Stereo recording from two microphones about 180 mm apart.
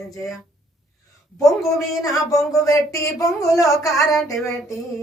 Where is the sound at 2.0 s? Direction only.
20° left (ahead or behind).